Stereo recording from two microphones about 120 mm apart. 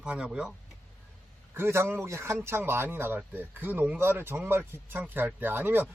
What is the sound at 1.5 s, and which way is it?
A man's voice, 20° right (ahead or behind).